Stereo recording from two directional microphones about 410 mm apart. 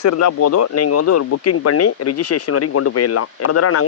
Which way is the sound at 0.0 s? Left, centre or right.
Left.